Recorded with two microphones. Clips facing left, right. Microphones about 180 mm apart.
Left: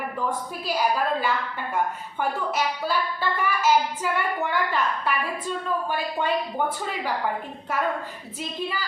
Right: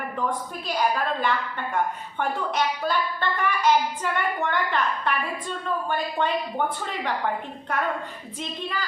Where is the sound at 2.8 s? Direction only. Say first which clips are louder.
Even; 5° left (ahead or behind).